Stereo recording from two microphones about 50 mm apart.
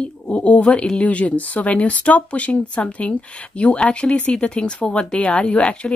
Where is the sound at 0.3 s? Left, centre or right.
Left.